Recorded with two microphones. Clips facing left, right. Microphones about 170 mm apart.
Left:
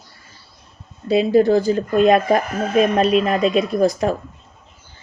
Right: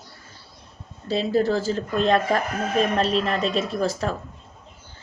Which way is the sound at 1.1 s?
15° left (ahead or behind).